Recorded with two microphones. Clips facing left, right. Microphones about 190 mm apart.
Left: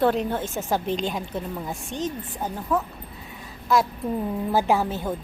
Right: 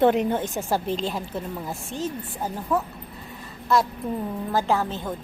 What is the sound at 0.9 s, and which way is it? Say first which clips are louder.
A woman's voice: left 1 dB; centre (ahead or behind).